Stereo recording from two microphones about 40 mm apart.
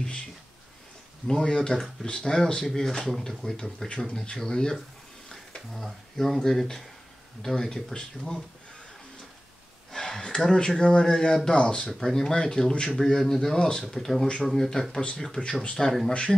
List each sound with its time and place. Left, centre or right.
1.2 s speech: centre
5.7 s speech: centre
6.4 s speech: centre
9.9 s a sound: centre
10.8 s speech: left
12.0 s speech: centre
13.8 s speech: centre
14.2 s speech: centre